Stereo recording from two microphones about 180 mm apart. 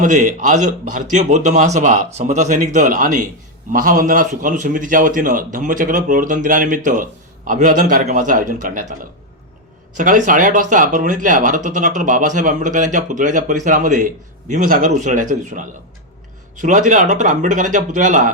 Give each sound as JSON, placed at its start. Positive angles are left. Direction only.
{"t": 0.0, "sound": "speech", "side_deg": -45}
{"t": 10.0, "sound": "speech", "side_deg": -45}